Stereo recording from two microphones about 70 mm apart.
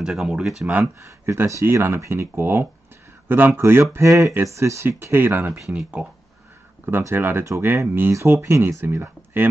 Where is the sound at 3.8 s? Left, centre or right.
Right.